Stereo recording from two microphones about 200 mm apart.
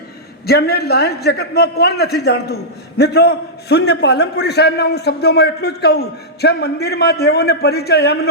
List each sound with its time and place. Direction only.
0.4 s a man's voice: 50° left (ahead or behind)